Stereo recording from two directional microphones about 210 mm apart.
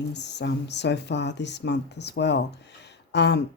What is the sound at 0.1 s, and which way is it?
Speech, 55° left (ahead or behind).